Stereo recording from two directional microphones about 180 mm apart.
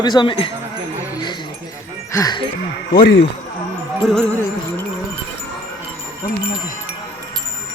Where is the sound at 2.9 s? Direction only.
50° left (ahead or behind).